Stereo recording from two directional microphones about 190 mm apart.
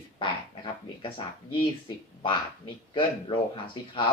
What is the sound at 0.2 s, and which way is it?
Speech, 25° left (ahead or behind).